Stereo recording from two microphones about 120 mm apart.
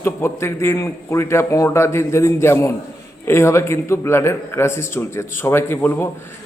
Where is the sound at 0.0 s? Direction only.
20° left (ahead or behind).